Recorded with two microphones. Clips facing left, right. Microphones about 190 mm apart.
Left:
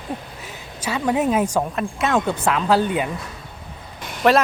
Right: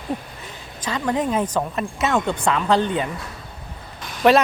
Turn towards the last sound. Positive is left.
turn(degrees=0)  # may be behind; listen again after turning